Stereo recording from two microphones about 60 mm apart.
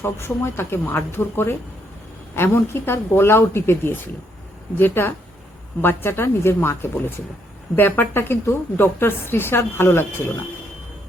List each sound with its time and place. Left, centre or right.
0.0 s a woman's voice: left